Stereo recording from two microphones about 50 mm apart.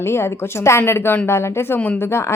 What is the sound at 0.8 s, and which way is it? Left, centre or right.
A woman's voice, left.